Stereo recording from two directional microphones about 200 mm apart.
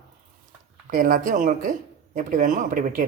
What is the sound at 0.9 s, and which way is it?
Speech, 45° right (ahead or behind).